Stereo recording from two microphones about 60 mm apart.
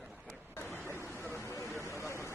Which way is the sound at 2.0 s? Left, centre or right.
Left.